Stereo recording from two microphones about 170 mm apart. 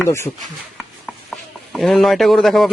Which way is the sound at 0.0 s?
15° left (ahead or behind).